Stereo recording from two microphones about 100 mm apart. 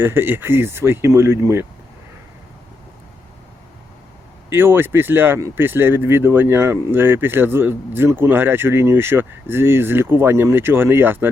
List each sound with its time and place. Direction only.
0.0 s speech: 20° right (ahead or behind)
4.4 s speech: 25° right (ahead or behind)